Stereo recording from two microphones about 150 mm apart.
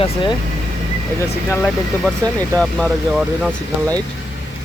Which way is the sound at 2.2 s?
25° right (ahead or behind).